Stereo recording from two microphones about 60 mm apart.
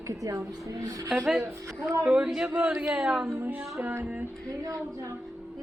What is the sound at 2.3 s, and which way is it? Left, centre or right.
Speech, centre.